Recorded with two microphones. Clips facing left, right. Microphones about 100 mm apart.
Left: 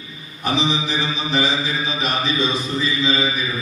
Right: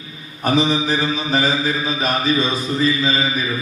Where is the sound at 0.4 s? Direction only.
45° right (ahead or behind).